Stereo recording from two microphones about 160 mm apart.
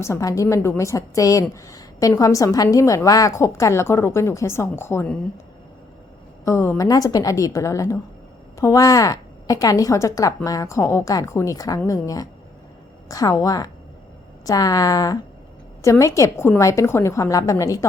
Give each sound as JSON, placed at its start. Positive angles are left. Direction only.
{"t": 0.0, "sound": "a woman's voice", "side_deg": 20}
{"t": 6.4, "sound": "a woman's voice", "side_deg": 20}